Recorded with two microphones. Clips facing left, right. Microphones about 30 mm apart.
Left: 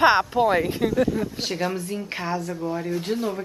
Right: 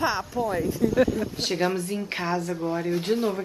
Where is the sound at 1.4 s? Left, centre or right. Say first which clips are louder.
Right 1 dB; centre.